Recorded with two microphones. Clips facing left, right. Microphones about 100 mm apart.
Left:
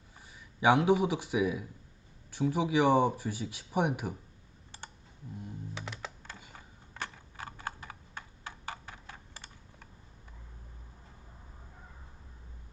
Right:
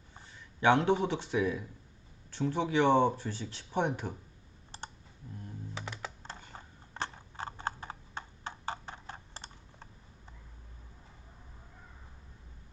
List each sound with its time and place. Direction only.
0.2 s speech: 10° left (ahead or behind)
5.7 s music: 5° right (ahead or behind)
6.5 s typing: 25° right (ahead or behind)